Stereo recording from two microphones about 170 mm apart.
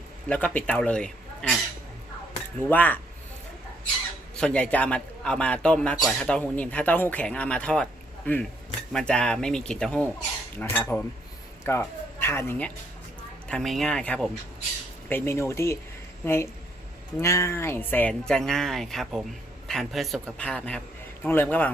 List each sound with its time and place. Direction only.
0.3 s a man's voice: 10° left (ahead or behind)
2.6 s a man's voice: 10° left (ahead or behind)
4.4 s a man's voice: 5° left (ahead or behind)